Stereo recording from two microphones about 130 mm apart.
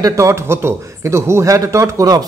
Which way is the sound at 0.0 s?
25° right (ahead or behind).